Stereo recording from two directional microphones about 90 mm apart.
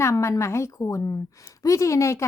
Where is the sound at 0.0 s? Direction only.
30° left (ahead or behind).